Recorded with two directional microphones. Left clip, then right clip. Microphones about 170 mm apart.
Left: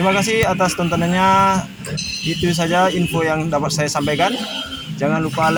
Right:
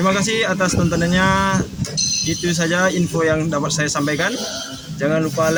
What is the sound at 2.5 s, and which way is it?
Speech, 20° left (ahead or behind).